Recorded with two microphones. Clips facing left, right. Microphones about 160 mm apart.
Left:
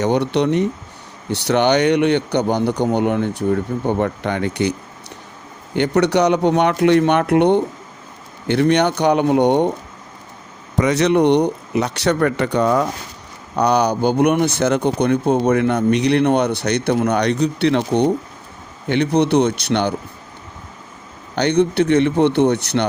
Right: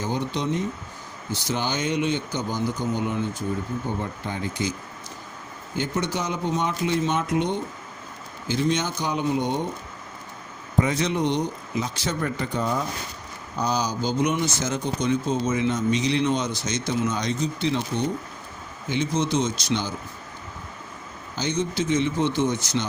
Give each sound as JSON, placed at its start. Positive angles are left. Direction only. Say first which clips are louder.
{"t": 0.0, "sound": "speech", "louder": "left 10 dB", "side_deg": 70}
{"t": 10.8, "sound": "speech", "louder": "left 8 dB", "side_deg": 75}
{"t": 21.3, "sound": "speech", "louder": "left 10 dB", "side_deg": 65}